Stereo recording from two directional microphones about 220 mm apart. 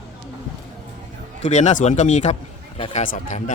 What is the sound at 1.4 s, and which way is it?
A man's voice, 30° left (ahead or behind).